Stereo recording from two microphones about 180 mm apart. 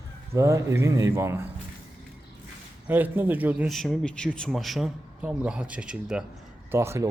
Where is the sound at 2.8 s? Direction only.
10° right (ahead or behind).